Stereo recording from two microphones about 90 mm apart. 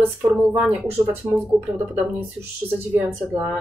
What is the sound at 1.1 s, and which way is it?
Speech, 25° right (ahead or behind).